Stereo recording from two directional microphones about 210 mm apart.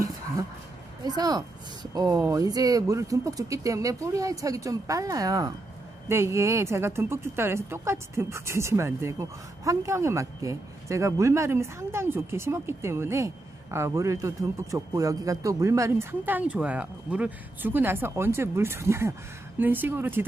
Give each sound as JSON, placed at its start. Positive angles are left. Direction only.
{"t": 1.0, "sound": "speech", "side_deg": -20}